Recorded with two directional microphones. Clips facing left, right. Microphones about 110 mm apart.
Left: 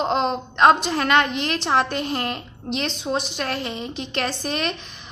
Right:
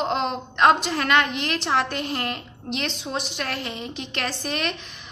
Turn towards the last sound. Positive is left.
turn(degrees=30)  # may be behind; listen again after turning